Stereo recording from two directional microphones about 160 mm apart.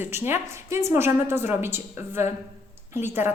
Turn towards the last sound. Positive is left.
turn(degrees=-15)  # may be behind; listen again after turning